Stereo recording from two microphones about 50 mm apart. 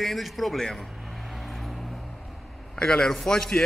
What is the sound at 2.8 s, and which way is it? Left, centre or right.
Speech, centre.